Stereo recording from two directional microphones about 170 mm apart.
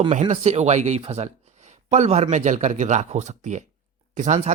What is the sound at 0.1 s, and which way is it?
Speech, 45° right (ahead or behind).